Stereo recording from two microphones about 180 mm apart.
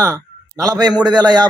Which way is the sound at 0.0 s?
20° right (ahead or behind).